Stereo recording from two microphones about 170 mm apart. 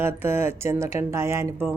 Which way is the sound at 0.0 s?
15° right (ahead or behind).